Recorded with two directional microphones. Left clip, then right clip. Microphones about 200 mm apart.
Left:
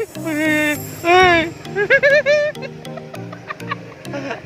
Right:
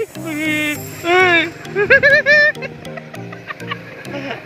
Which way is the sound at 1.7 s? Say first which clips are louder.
Right 2 dB; centre (ahead or behind).